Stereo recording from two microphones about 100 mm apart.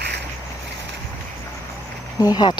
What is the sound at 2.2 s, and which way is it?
Speech, 45° left (ahead or behind).